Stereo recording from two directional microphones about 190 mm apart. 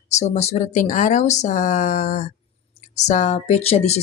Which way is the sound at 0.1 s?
35° left (ahead or behind).